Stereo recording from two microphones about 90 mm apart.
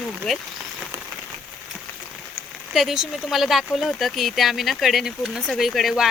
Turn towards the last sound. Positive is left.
turn(degrees=0)  # may be behind; listen again after turning